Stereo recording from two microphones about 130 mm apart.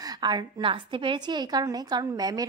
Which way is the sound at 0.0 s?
30° right (ahead or behind).